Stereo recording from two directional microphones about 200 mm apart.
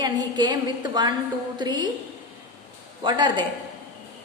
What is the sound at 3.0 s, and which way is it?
Speech, 20° right (ahead or behind).